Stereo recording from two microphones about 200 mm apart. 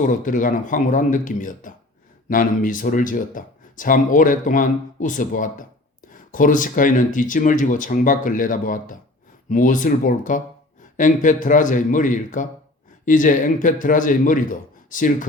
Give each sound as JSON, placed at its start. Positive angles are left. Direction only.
{"t": 0.1, "sound": "speech", "side_deg": 40}